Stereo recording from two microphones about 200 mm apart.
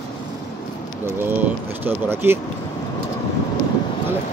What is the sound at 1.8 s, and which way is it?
Speech, 10° right (ahead or behind).